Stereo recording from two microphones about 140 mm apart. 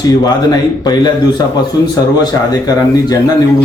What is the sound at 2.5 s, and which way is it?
Speech, 25° left (ahead or behind).